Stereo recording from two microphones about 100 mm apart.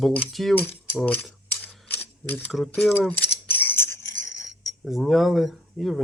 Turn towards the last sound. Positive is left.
turn(degrees=0)  # may be behind; listen again after turning